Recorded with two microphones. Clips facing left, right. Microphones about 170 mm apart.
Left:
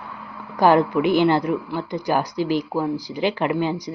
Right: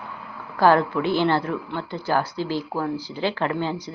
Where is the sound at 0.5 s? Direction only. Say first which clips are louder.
Left 2 dB; 15° left (ahead or behind).